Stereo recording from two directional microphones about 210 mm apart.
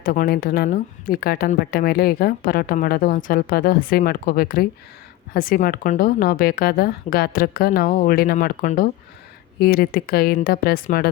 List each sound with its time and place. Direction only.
0.0 s a woman's voice: 40° left (ahead or behind)